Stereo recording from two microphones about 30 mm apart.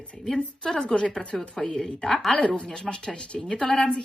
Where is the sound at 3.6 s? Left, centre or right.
Centre.